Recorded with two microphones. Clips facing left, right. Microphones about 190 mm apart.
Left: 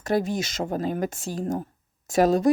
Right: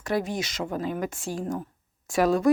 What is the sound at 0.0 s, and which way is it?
Speech, 40° left (ahead or behind).